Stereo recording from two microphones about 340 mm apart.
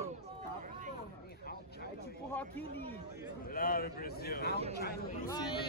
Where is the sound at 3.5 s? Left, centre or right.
Left.